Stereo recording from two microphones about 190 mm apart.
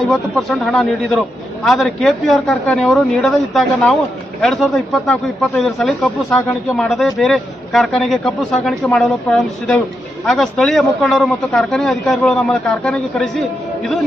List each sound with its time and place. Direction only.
0.0 s speech: centre (ahead or behind)